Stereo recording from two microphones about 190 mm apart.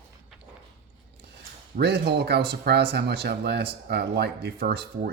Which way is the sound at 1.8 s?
60° right (ahead or behind).